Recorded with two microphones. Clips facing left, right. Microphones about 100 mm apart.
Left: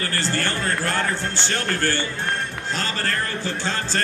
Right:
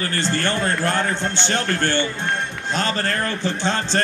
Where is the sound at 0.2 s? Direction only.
20° right (ahead or behind).